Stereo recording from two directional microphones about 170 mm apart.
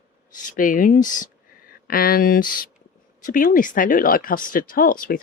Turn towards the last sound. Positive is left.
turn(degrees=55)  # may be behind; listen again after turning